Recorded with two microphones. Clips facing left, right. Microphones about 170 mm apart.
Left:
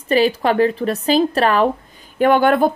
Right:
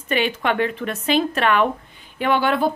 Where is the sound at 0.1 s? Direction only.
35° left (ahead or behind).